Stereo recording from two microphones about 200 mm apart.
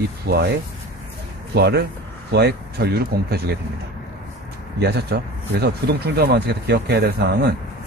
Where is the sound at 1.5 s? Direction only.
55° right (ahead or behind).